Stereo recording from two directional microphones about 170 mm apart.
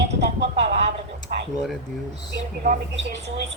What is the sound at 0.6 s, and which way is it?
Speech, 40° right (ahead or behind).